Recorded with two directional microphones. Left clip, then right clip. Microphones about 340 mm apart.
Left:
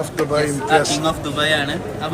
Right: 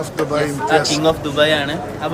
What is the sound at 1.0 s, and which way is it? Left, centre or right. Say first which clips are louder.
A man's voice: right 4 dB; centre.